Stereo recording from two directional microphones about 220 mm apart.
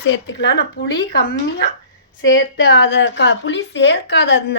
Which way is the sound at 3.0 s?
55° left (ahead or behind).